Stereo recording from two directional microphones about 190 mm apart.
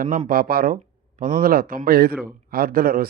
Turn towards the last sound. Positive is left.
turn(degrees=-50)  # may be behind; listen again after turning